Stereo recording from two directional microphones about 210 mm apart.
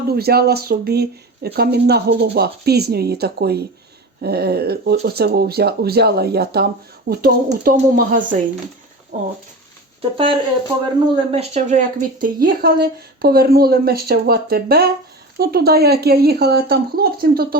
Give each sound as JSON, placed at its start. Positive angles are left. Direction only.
{"t": 0.1, "sound": "speech", "side_deg": -50}
{"t": 10.0, "sound": "speech", "side_deg": -25}